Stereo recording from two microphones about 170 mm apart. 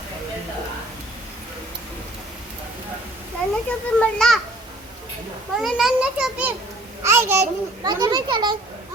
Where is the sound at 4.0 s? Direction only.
5° left (ahead or behind).